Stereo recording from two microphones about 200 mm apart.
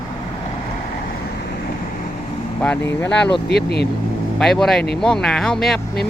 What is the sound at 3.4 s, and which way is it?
Speech, 55° left (ahead or behind).